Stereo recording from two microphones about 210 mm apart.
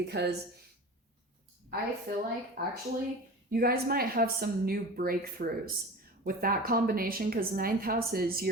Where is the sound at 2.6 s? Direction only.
45° right (ahead or behind).